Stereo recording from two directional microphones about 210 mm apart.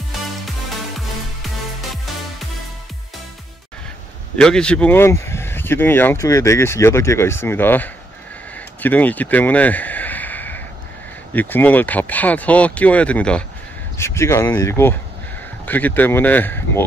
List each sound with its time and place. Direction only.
0.5 s music: centre (ahead or behind)
4.4 s speech: 5° left (ahead or behind)
8.5 s a sound: 10° left (ahead or behind)
11.3 s speech: 10° left (ahead or behind)